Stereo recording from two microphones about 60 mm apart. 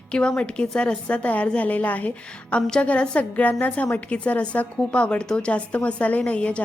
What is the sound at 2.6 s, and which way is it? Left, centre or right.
Speech, centre.